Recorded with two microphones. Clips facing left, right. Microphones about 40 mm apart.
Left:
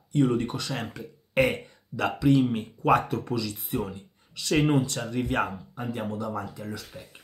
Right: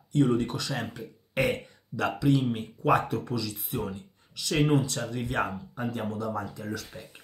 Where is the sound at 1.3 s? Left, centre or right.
Left.